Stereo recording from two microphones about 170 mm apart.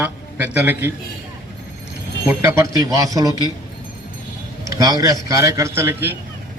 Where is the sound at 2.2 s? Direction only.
15° right (ahead or behind).